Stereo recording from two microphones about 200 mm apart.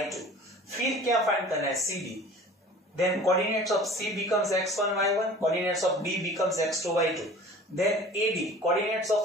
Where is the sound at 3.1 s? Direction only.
Centre (ahead or behind).